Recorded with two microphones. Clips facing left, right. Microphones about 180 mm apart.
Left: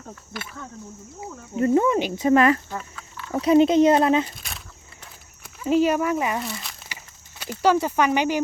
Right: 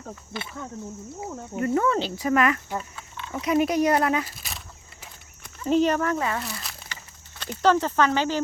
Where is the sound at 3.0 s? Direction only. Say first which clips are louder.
Even; 25° right (ahead or behind).